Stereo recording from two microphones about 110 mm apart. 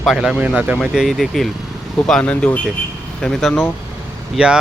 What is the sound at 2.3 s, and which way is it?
Speech, 15° left (ahead or behind).